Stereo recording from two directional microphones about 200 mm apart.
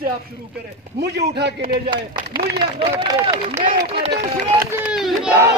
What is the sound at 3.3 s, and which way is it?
Speech, 15° right (ahead or behind).